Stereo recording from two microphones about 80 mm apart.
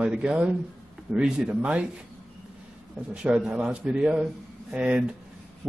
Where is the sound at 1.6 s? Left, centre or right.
Centre.